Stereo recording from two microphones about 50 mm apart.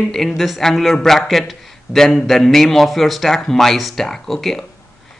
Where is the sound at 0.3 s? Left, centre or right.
Centre.